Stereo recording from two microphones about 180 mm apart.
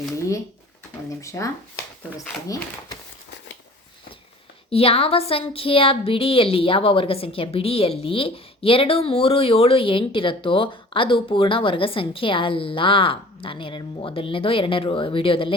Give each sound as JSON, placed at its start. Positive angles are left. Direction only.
{"t": 1.2, "sound": "speech", "side_deg": 15}
{"t": 4.7, "sound": "speech", "side_deg": 35}